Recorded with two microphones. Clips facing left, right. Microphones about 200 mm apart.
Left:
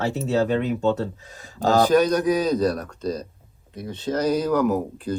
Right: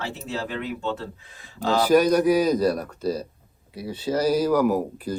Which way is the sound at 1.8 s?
10° right (ahead or behind).